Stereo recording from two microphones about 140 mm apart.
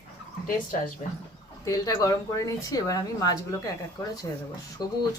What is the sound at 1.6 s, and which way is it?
A woman's voice, 30° left (ahead or behind).